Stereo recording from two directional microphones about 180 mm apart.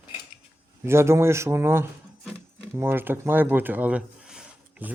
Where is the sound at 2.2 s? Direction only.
10° right (ahead or behind).